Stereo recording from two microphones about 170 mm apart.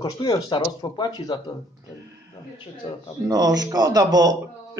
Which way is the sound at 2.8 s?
30° left (ahead or behind).